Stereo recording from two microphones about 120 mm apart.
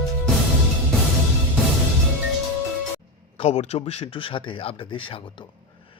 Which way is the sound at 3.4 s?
70° left (ahead or behind).